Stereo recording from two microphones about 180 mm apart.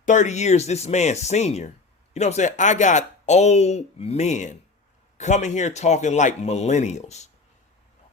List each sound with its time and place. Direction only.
0.0 s speech: 45° left (ahead or behind)